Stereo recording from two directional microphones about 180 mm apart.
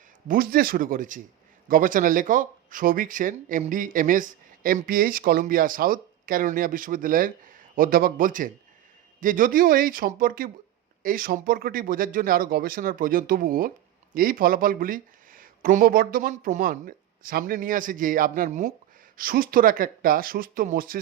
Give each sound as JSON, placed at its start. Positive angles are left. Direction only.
{"t": 0.3, "sound": "speech", "side_deg": -55}